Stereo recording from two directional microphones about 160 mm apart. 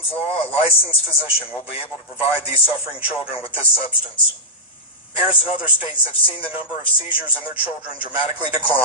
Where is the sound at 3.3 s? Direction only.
35° left (ahead or behind).